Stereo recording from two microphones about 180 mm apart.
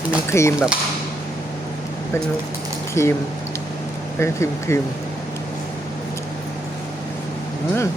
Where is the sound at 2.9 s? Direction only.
15° left (ahead or behind).